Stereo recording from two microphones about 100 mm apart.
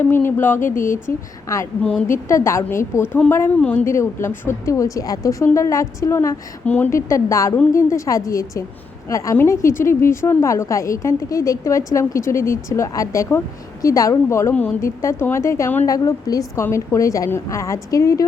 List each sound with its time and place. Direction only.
0.0 s a woman's voice: 20° left (ahead or behind)
6.7 s a woman's voice: 15° left (ahead or behind)
6.9 s a woman's voice: 30° left (ahead or behind)